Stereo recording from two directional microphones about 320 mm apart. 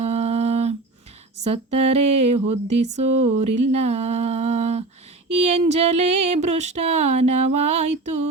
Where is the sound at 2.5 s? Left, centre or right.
Right.